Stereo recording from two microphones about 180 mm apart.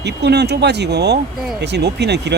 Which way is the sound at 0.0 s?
70° right (ahead or behind).